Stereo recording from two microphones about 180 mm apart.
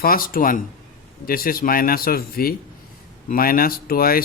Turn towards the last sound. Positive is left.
turn(degrees=55)  # may be behind; listen again after turning